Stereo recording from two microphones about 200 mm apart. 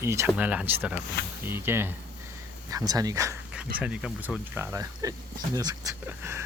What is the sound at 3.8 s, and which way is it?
Speech, 5° right (ahead or behind).